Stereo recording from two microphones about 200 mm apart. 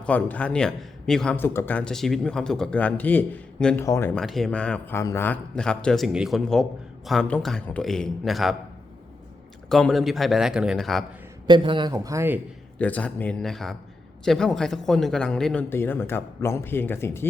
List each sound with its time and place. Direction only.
0.0 s a man's voice: 5° left (ahead or behind)
3.8 s a man's voice: 15° left (ahead or behind)
4.1 s a man's voice: centre (ahead or behind)
9.6 s a man's voice: centre (ahead or behind)
11.4 s a man's voice: 25° right (ahead or behind)
12.8 s a man's voice: 5° left (ahead or behind)